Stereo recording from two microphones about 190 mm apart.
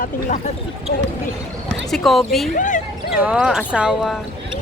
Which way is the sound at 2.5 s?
40° left (ahead or behind).